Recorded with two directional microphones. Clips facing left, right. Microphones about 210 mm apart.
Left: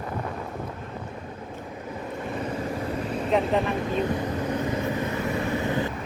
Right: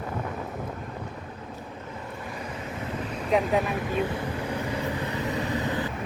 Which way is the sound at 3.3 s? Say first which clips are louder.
Even; 5° right (ahead or behind).